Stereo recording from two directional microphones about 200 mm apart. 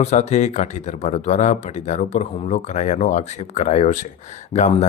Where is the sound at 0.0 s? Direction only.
35° left (ahead or behind).